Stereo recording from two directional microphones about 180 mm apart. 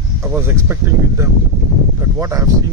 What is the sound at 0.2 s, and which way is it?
Speech, 10° right (ahead or behind).